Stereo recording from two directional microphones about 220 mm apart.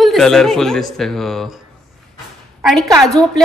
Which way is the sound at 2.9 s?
Centre (ahead or behind).